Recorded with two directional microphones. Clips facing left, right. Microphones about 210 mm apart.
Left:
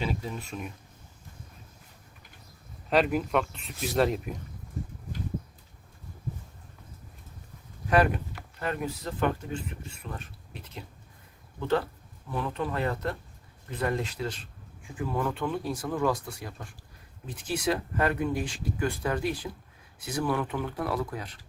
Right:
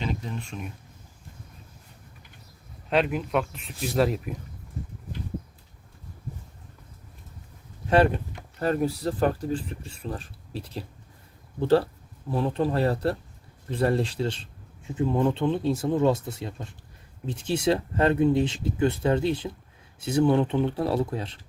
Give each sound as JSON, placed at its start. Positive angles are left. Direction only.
{"t": 0.0, "sound": "speech", "side_deg": 5}
{"t": 2.9, "sound": "speech", "side_deg": 0}
{"t": 7.9, "sound": "speech", "side_deg": -30}